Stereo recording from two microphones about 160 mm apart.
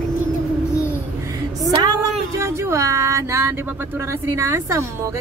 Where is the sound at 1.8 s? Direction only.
25° right (ahead or behind).